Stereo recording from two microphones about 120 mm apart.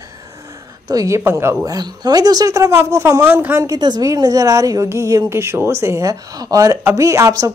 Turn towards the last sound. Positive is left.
turn(degrees=-30)  # may be behind; listen again after turning